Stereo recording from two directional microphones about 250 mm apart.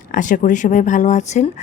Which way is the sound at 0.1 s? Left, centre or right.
Left.